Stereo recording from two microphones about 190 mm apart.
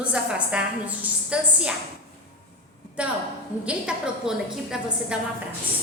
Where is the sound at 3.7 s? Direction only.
5° right (ahead or behind).